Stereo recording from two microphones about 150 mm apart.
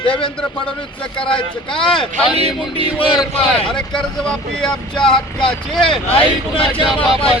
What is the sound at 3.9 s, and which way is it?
Speech, 5° left (ahead or behind).